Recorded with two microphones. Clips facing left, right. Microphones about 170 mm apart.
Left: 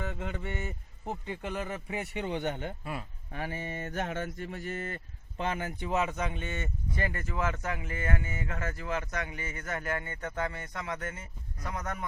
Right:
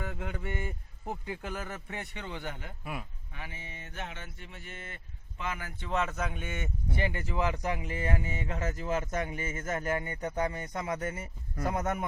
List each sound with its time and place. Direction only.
0.0 s a man's voice: centre (ahead or behind)
2.2 s speech: 20° left (ahead or behind)
3.3 s speech: 45° left (ahead or behind)
5.4 s speech: 30° left (ahead or behind)
5.7 s speech: 15° left (ahead or behind)
6.0 s speech: centre (ahead or behind); by 12.0 s 25° right (ahead or behind)